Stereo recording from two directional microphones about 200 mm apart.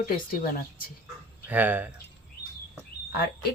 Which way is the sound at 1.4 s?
10° right (ahead or behind).